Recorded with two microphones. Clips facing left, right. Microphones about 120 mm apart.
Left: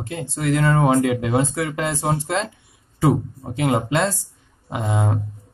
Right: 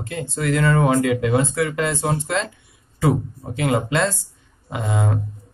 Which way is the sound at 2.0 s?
30° left (ahead or behind).